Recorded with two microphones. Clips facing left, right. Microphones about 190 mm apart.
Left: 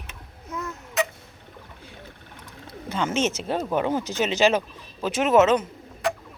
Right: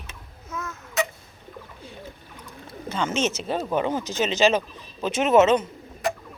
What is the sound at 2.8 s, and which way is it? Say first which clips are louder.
Speech: left 1 dB; 15° left (ahead or behind).